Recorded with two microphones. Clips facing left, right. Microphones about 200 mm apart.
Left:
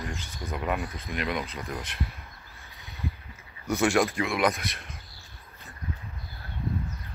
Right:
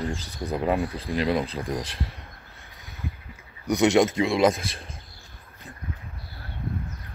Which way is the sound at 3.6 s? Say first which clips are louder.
Right 5 dB; 20° right (ahead or behind).